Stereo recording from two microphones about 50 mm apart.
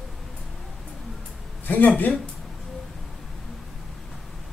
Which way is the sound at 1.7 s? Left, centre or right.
Left.